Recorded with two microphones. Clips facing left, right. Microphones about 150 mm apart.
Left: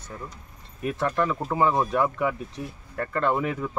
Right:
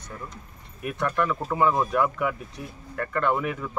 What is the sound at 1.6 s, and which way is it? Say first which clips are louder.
Speech: even; 30° left (ahead or behind).